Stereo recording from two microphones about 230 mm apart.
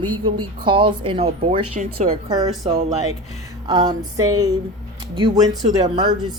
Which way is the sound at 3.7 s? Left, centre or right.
Centre.